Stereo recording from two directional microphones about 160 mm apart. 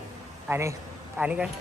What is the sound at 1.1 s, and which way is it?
Speech, 5° right (ahead or behind).